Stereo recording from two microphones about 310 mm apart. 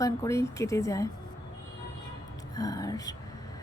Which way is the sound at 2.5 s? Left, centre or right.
Centre.